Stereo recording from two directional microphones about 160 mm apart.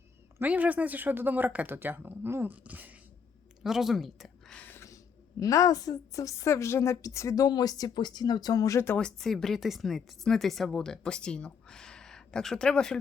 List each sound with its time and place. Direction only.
0.3 s speech: 10° right (ahead or behind)
3.6 s a sound: centre (ahead or behind); by 4.9 s 15° left (ahead or behind)
5.4 s a woman's voice: 20° left (ahead or behind)
9.0 s a woman's voice: 5° left (ahead or behind)